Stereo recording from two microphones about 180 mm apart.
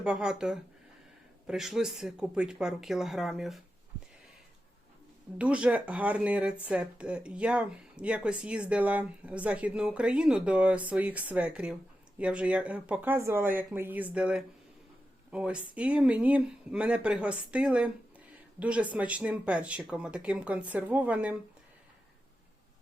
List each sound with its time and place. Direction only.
0.0 s speech: 5° right (ahead or behind)
5.4 s speech: 5° right (ahead or behind)